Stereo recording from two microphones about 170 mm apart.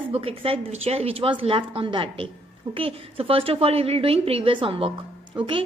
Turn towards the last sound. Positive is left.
turn(degrees=-30)  # may be behind; listen again after turning